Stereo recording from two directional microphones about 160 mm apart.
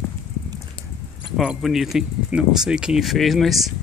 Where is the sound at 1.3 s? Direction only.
Centre (ahead or behind).